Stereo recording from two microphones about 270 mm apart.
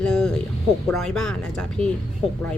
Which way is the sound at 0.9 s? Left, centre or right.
Centre.